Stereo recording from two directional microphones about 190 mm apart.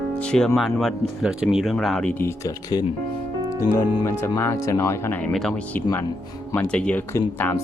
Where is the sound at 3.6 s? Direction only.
15° left (ahead or behind).